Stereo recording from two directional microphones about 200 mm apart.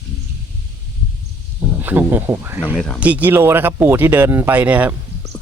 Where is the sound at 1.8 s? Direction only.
10° right (ahead or behind).